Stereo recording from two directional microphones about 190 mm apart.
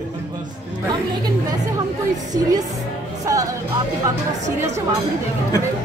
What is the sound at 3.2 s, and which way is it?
Music, 15° right (ahead or behind).